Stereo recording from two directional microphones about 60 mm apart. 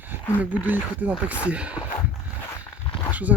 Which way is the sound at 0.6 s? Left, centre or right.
Right.